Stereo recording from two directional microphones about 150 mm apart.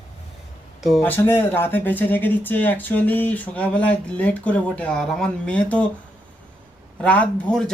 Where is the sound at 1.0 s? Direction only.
15° left (ahead or behind).